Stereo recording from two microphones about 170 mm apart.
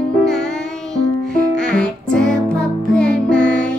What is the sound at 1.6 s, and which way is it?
Music, 5° left (ahead or behind).